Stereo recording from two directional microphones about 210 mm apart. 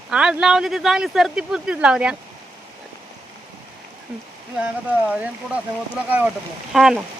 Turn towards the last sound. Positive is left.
turn(degrees=0)  # may be behind; listen again after turning